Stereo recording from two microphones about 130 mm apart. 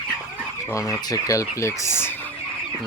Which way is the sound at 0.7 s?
25° left (ahead or behind).